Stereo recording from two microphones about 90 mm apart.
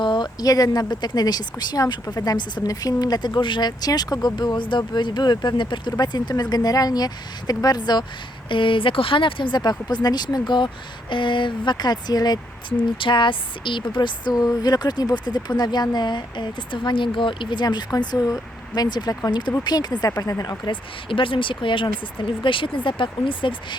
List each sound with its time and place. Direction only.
0.0 s a sound: 65° left (ahead or behind)
0.3 s speech: 45° left (ahead or behind)
4.4 s speech: 60° left (ahead or behind)
8.4 s speech: 65° left (ahead or behind); by 12.4 s 50° left (ahead or behind)
13.0 s speech: 65° left (ahead or behind)
20.7 s speech: 70° left (ahead or behind)